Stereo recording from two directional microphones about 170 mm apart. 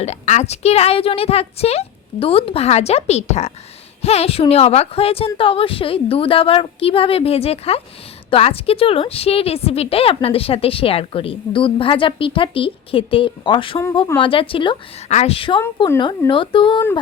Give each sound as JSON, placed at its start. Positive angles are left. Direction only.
{"t": 0.0, "sound": "a woman's voice", "side_deg": 40}